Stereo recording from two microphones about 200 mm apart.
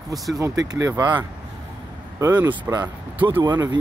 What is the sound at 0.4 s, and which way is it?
Speech, 15° right (ahead or behind).